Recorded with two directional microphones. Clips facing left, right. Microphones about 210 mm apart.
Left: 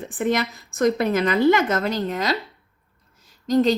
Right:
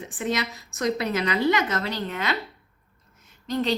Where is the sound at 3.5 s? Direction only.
45° left (ahead or behind).